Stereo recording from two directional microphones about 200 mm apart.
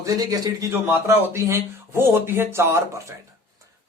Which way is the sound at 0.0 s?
20° right (ahead or behind).